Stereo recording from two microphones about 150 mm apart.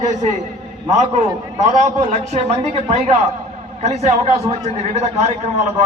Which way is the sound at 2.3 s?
50° right (ahead or behind).